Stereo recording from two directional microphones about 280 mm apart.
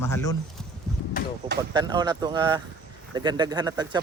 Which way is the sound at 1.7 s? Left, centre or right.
Centre.